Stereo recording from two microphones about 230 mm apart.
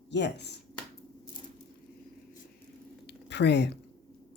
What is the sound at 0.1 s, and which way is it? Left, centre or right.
Speech, left.